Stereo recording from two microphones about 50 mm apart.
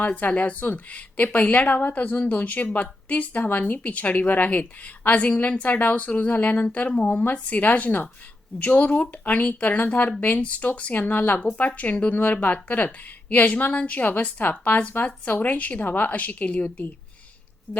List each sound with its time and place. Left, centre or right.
0.2 s a woman's voice: left